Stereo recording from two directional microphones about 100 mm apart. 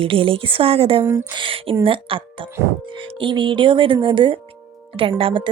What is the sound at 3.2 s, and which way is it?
A woman's voice, 55° right (ahead or behind).